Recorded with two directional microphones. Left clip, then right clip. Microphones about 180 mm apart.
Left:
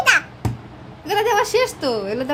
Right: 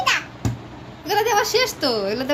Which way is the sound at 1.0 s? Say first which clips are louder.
Left 1 dB; 20° left (ahead or behind).